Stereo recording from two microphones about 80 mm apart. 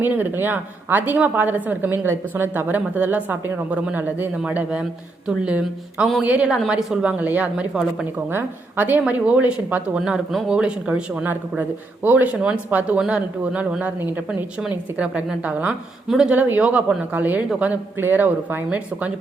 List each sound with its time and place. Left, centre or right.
0.0 s a woman's voice: right; by 7.2 s centre
7.2 s speech: centre
8.3 s a woman's voice: right
10.0 s a woman's voice: centre
14.9 s speech: centre
16.3 s a woman's voice: right